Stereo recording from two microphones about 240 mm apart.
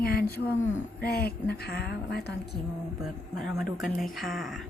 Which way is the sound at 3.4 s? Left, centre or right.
Centre.